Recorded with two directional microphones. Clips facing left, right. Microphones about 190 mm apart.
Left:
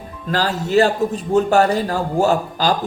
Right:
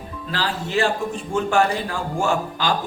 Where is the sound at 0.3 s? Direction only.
45° left (ahead or behind).